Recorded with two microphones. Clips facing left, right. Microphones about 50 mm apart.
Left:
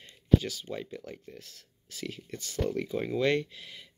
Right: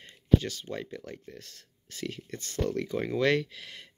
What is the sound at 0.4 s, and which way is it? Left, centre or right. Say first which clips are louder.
Speech: right 1 dB; right.